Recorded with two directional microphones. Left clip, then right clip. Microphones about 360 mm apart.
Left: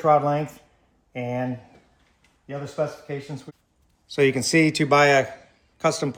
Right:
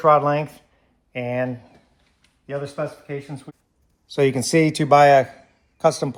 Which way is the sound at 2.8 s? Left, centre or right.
Centre.